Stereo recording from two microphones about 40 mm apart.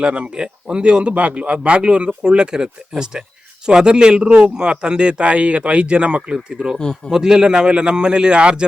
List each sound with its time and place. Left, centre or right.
0.0 s speech: right